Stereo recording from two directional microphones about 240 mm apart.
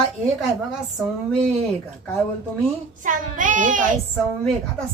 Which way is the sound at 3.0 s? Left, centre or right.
Right.